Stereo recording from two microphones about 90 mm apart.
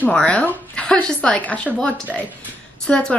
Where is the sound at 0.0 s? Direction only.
15° left (ahead or behind).